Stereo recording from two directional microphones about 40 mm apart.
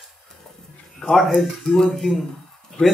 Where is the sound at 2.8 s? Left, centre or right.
Left.